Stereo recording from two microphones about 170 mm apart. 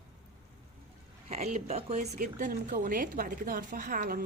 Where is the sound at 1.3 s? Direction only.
40° right (ahead or behind).